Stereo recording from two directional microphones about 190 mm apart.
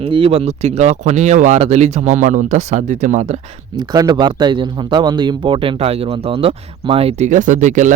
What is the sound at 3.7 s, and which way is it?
Speech, 20° right (ahead or behind).